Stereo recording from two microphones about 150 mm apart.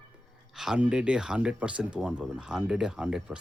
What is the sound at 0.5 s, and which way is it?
Speech, 5° right (ahead or behind).